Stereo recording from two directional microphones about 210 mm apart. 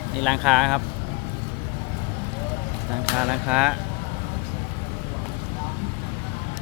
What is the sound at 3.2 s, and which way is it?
Speech, 5° right (ahead or behind).